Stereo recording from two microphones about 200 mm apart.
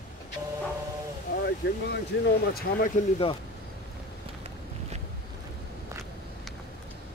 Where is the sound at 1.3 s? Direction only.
55° left (ahead or behind).